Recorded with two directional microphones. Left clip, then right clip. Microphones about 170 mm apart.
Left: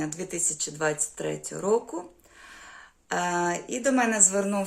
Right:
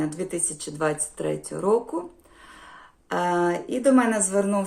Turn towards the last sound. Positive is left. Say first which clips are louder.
# right 2 dB
turn(degrees=20)  # may be behind; listen again after turning